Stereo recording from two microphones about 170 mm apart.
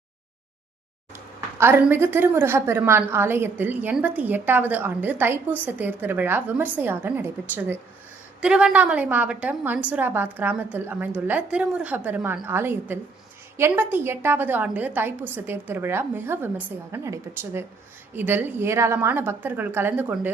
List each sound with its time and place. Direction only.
1.1 s a woman's voice: 15° right (ahead or behind)